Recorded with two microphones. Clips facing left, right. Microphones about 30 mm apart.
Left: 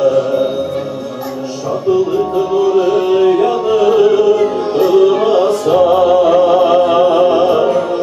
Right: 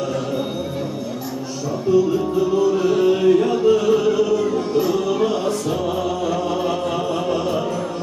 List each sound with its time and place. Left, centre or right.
0.0 s music: centre
1.9 s music: left